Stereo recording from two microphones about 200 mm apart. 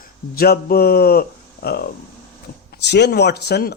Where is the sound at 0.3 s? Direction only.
50° left (ahead or behind).